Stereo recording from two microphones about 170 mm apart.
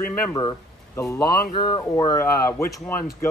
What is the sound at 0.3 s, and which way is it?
Speech, 20° left (ahead or behind).